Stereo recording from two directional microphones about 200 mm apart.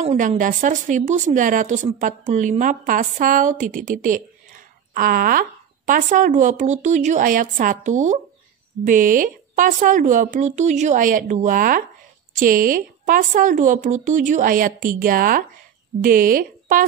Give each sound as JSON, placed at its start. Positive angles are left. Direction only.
{"t": 0.0, "sound": "speech", "side_deg": -30}